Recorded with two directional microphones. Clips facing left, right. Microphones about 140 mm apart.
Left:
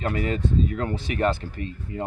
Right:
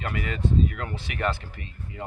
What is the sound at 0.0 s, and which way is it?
Speech, 35° left (ahead or behind).